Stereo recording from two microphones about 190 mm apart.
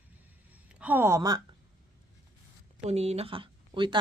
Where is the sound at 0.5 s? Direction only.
5° right (ahead or behind).